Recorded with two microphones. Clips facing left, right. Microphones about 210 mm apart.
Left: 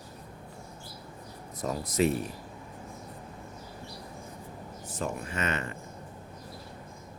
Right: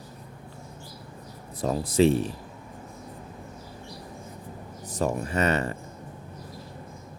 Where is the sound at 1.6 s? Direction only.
30° right (ahead or behind).